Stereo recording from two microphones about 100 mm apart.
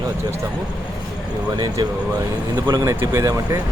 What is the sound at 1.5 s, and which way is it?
Speech, 40° right (ahead or behind).